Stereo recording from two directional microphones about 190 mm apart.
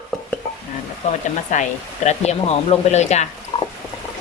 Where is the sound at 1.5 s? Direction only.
40° left (ahead or behind).